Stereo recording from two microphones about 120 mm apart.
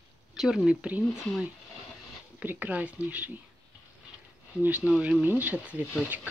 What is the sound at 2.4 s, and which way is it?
Speech, 15° right (ahead or behind).